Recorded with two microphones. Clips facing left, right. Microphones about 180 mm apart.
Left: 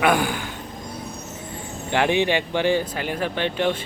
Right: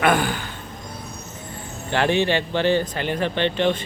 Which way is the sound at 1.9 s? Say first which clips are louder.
Even; 15° left (ahead or behind).